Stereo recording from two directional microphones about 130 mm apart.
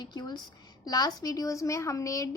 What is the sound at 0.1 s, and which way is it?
A woman's voice, 35° left (ahead or behind).